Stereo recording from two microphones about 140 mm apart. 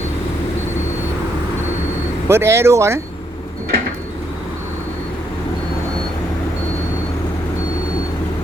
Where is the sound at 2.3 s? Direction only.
20° right (ahead or behind).